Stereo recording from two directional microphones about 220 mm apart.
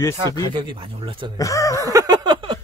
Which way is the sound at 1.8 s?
15° right (ahead or behind).